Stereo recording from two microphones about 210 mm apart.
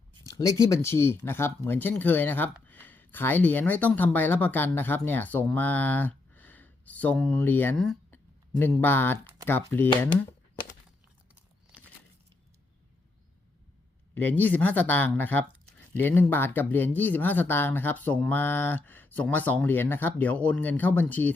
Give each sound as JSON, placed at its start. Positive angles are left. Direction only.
{"t": 0.3, "sound": "a sound", "side_deg": 15}
{"t": 0.6, "sound": "speech", "side_deg": 15}
{"t": 14.1, "sound": "speech", "side_deg": 10}